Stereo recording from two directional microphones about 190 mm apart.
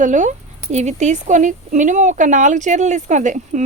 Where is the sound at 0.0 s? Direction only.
40° right (ahead or behind).